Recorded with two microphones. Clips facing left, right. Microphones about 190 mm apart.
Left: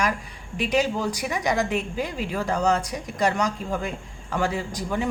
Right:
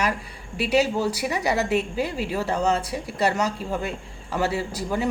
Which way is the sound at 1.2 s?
35° right (ahead or behind).